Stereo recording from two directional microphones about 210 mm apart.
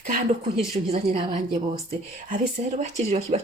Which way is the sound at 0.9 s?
30° right (ahead or behind).